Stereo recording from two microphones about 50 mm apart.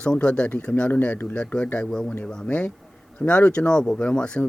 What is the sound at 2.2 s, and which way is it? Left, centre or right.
Speech, centre.